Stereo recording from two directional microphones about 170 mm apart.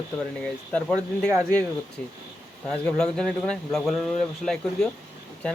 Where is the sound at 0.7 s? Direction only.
5° left (ahead or behind).